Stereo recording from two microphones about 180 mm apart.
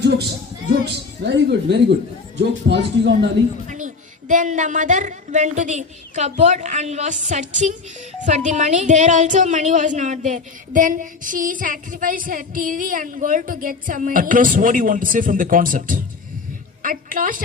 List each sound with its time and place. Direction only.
0.9 s a woman's voice: 70° right (ahead or behind)
3.7 s speech: 45° right (ahead or behind)